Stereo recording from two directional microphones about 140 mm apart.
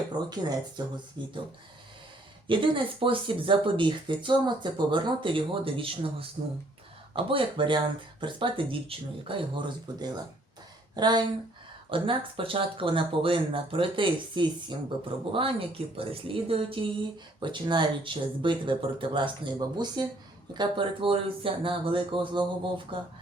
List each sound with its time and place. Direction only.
0.8 s speech: 30° right (ahead or behind)
2.5 s speech: 35° right (ahead or behind)